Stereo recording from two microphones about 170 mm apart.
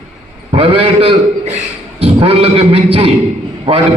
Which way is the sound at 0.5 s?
30° right (ahead or behind).